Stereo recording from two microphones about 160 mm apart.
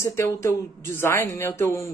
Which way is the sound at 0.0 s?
15° left (ahead or behind).